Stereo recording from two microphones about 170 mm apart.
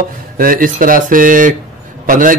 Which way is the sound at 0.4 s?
55° right (ahead or behind).